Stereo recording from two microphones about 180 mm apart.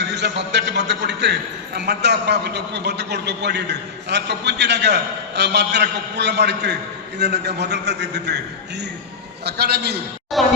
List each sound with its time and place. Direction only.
0.0 s a man's voice: 70° right (ahead or behind)
9.4 s a man's voice: 65° right (ahead or behind)
10.3 s speech: centre (ahead or behind)